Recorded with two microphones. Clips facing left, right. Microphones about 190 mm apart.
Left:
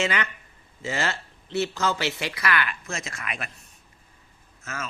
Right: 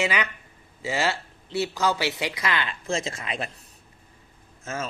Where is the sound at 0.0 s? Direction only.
15° right (ahead or behind).